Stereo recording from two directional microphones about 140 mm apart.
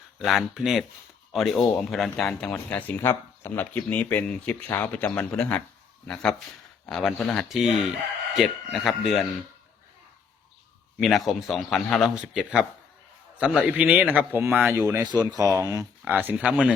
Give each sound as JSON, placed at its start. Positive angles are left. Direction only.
{"t": 0.2, "sound": "a man's voice", "side_deg": 0}
{"t": 6.8, "sound": "a man's voice", "side_deg": 5}
{"t": 10.9, "sound": "a man's voice", "side_deg": 0}
{"t": 16.0, "sound": "a man's voice", "side_deg": -15}